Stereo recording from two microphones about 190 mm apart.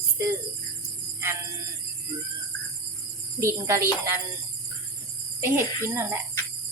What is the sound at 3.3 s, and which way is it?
Speech, 15° right (ahead or behind).